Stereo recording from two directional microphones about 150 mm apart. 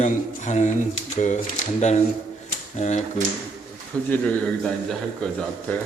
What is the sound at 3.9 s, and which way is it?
Speech, 10° left (ahead or behind).